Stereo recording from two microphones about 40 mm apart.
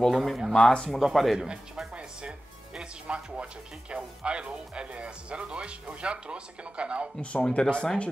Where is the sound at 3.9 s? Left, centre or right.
Right.